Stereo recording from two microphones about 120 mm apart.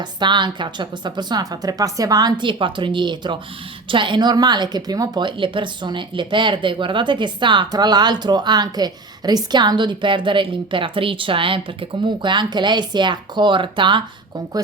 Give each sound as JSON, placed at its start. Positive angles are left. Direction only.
{"t": 0.0, "sound": "a woman's voice", "side_deg": -40}